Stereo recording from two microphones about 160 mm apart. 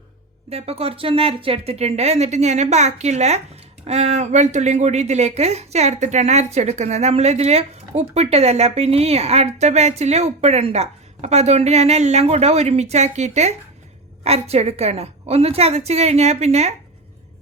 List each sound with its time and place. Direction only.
0.5 s a woman's voice: 40° right (ahead or behind)